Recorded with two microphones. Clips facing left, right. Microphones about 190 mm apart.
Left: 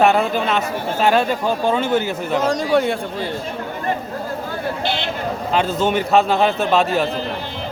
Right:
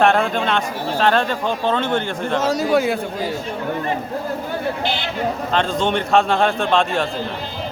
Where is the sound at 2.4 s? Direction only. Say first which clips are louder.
Even; 5° right (ahead or behind).